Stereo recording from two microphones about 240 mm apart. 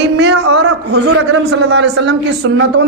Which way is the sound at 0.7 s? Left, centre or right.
Right.